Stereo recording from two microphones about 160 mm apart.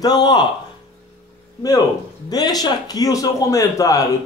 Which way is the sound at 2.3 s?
25° left (ahead or behind).